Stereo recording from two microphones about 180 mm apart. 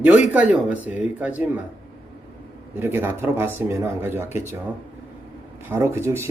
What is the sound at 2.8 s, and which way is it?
Speech, 15° right (ahead or behind).